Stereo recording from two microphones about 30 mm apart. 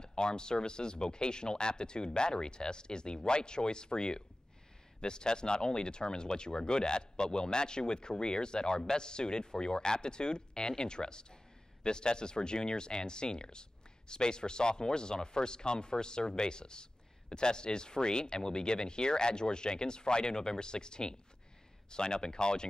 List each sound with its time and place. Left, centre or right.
0.0 s speech: left